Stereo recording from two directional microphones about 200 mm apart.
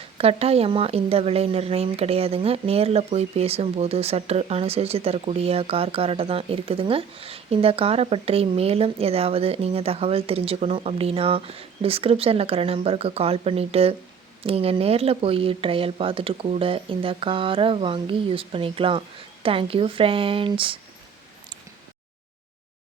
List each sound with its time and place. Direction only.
0.2 s speech: 30° right (ahead or behind)